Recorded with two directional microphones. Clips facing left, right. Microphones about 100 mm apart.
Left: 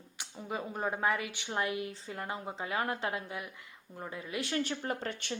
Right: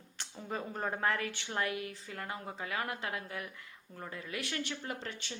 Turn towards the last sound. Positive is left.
turn(degrees=55)  # may be behind; listen again after turning